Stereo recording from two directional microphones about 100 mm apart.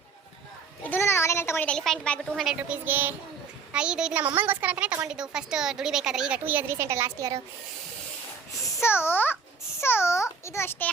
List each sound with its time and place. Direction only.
0.9 s a sound: 25° left (ahead or behind)
1.7 s a woman's voice: 5° left (ahead or behind)
2.6 s a woman's voice: 15° right (ahead or behind)
4.2 s a woman's voice: 20° right (ahead or behind)
6.4 s a woman's voice: 20° right (ahead or behind)
8.6 s a child's voice: 25° left (ahead or behind)